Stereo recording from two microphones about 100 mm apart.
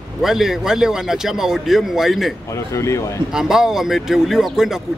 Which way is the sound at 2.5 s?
30° left (ahead or behind).